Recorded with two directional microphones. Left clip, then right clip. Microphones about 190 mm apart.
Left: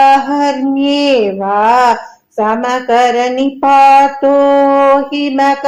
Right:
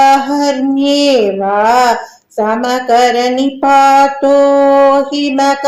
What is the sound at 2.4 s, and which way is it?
Speech, 30° right (ahead or behind).